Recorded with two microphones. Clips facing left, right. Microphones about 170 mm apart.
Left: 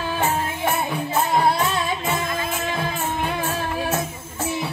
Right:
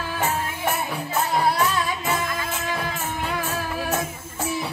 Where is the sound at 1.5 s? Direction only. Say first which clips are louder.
Left 1 dB; 25° left (ahead or behind).